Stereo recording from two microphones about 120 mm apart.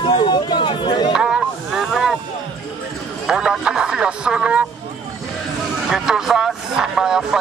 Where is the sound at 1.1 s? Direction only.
5° right (ahead or behind).